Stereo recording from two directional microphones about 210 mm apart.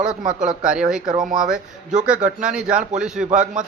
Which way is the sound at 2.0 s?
5° right (ahead or behind).